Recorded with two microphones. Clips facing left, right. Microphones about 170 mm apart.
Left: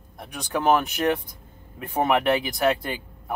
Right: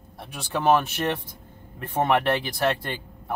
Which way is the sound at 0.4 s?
Centre (ahead or behind).